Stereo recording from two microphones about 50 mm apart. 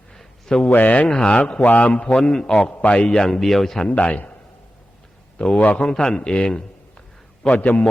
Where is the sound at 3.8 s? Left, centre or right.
Left.